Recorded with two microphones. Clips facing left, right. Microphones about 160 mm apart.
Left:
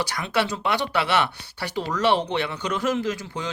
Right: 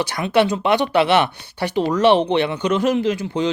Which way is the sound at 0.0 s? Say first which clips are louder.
Right 7 dB; 20° right (ahead or behind).